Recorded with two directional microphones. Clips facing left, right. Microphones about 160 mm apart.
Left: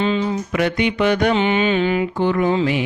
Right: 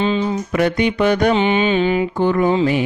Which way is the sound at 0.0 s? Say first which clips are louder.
Right 1 dB; 25° right (ahead or behind).